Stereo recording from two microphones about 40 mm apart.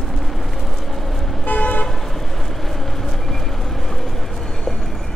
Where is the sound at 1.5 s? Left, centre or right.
Left.